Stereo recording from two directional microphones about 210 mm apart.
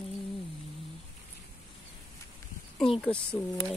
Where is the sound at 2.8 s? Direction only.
Centre (ahead or behind).